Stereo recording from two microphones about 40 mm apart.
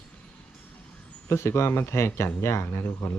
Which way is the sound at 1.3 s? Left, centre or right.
Left.